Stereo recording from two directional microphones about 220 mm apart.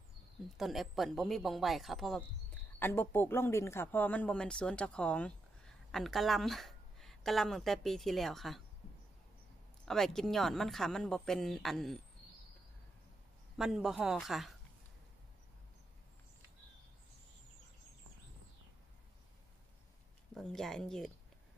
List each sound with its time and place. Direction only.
0.6 s speech: centre (ahead or behind)
9.8 s speech: centre (ahead or behind)
13.6 s speech: centre (ahead or behind)
20.3 s speech: centre (ahead or behind)